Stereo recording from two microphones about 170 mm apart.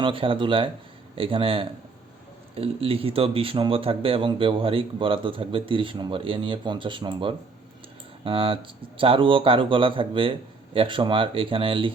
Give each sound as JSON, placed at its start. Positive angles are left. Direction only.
{"t": 0.0, "sound": "speech", "side_deg": -30}